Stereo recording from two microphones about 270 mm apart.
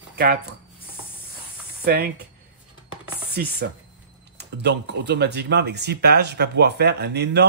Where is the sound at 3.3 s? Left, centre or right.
Right.